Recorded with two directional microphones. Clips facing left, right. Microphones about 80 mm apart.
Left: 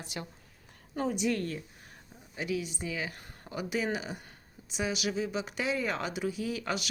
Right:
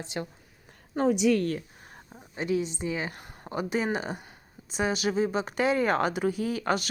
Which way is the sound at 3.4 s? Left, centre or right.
Right.